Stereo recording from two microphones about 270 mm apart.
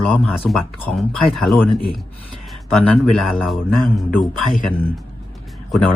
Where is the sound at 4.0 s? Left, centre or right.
Centre.